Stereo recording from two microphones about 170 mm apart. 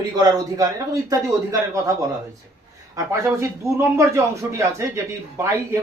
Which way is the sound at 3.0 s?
15° right (ahead or behind).